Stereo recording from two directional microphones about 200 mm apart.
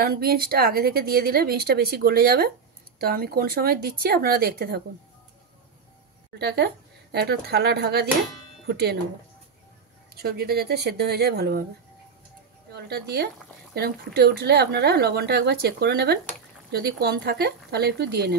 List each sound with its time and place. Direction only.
0.0 s a woman's voice: 50° right (ahead or behind)
6.3 s a woman's voice: 55° right (ahead or behind)
10.1 s a woman's voice: 50° right (ahead or behind)
12.7 s a woman's voice: 50° right (ahead or behind)